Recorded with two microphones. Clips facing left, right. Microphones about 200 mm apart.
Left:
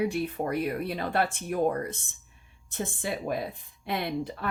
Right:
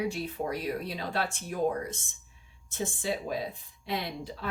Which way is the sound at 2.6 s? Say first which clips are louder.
Even; 60° left (ahead or behind).